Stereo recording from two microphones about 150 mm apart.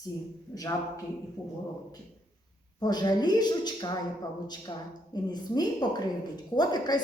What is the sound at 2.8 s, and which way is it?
A woman's voice, 25° left (ahead or behind).